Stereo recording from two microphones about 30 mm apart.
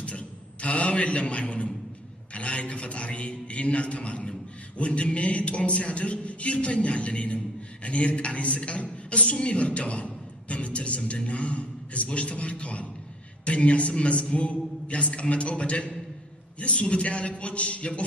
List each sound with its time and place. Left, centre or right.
0.0 s a sound: left
2.3 s a man's voice: left
8.5 s a man's voice: left